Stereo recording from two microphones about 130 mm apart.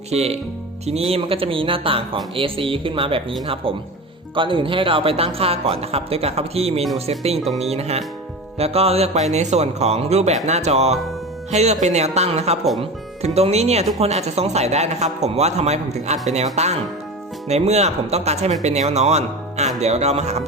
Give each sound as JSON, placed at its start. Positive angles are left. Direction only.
{"t": 0.1, "sound": "speech", "side_deg": -55}